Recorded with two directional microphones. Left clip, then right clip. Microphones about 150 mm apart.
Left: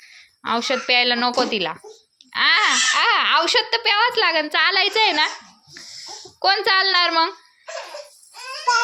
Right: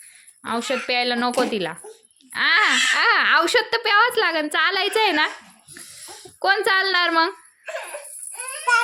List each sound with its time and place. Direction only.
0.0 s a sound: 10° right (ahead or behind)
0.9 s a woman's voice: 15° right (ahead or behind)
1.2 s a woman's voice: 25° right (ahead or behind)
4.9 s speech: 40° right (ahead or behind)
6.4 s speech: 30° right (ahead or behind)